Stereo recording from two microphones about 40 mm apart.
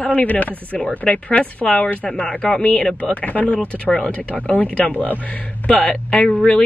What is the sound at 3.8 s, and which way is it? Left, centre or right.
Speech, left.